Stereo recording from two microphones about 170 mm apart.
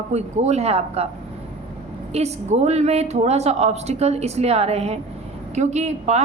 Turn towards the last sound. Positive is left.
turn(degrees=-40)  # may be behind; listen again after turning